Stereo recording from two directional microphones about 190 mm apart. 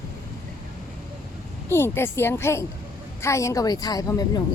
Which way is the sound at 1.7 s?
10° left (ahead or behind).